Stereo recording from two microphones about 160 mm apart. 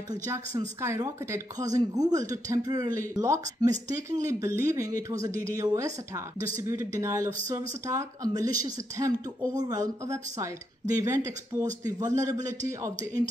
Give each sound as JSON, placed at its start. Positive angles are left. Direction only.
{"t": 0.6, "sound": "speech", "side_deg": -20}